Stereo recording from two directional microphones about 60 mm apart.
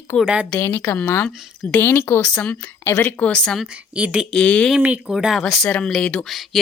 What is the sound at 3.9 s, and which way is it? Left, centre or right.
Speech, centre.